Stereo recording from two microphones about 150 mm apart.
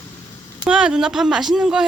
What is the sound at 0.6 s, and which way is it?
Speech, 5° right (ahead or behind).